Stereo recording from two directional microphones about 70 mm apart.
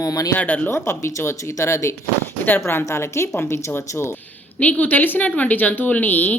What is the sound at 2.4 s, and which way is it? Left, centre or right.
Speech, left.